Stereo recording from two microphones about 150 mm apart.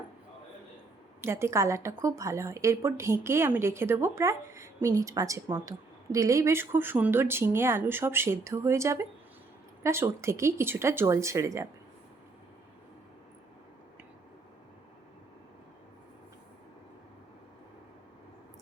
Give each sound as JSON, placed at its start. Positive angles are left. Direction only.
{"t": 1.2, "sound": "a woman's voice", "side_deg": -15}